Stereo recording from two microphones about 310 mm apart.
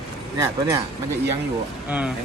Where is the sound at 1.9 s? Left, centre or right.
Centre.